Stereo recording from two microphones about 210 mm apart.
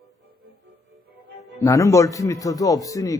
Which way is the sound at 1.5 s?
15° left (ahead or behind).